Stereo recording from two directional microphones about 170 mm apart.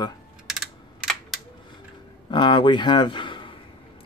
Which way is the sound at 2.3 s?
30° left (ahead or behind).